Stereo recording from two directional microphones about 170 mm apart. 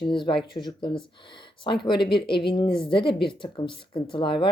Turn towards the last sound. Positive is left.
turn(degrees=30)  # may be behind; listen again after turning